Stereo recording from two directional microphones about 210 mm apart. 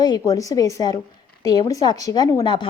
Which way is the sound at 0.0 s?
20° left (ahead or behind).